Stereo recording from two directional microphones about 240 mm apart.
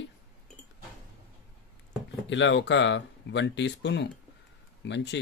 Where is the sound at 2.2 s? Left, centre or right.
Left.